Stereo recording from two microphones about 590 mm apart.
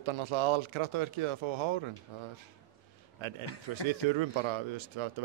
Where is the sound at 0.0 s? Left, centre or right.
Right.